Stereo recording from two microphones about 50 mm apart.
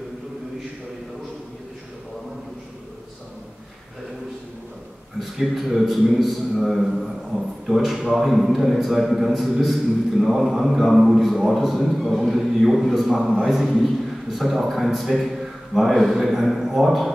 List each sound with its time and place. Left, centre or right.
5.2 s a man's voice: centre